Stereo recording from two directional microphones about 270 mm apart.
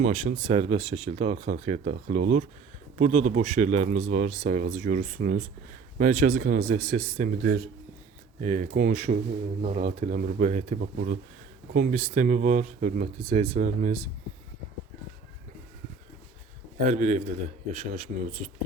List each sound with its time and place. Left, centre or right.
0.0 s speech: right
8.4 s speech: right
16.8 s speech: right